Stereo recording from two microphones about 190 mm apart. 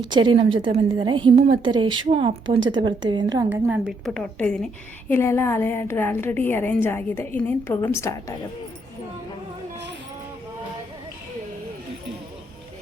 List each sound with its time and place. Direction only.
0.0 s a woman's voice: 25° right (ahead or behind)
3.5 s a woman's voice: 5° right (ahead or behind); by 8.2 s 15° left (ahead or behind)